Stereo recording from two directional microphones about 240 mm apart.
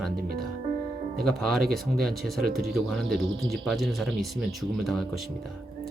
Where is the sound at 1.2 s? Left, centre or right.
Centre.